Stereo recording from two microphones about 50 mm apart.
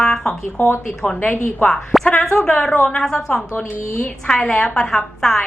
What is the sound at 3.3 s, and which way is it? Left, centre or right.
Speech, left.